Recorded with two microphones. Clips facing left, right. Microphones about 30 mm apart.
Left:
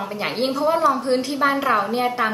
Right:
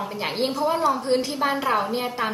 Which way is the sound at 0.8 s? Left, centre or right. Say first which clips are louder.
Left 3 dB; centre.